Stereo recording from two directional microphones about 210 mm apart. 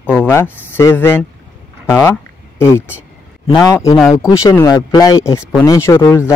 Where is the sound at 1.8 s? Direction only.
10° left (ahead or behind).